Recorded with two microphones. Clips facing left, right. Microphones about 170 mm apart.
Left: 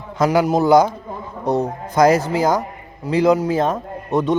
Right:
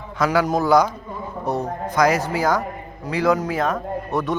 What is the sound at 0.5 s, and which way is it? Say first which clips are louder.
A man's voice: left 4 dB; 25° left (ahead or behind).